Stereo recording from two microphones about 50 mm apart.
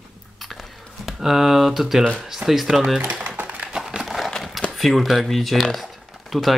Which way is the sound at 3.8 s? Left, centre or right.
Centre.